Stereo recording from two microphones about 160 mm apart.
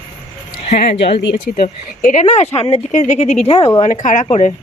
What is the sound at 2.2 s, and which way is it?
Speech, 40° left (ahead or behind).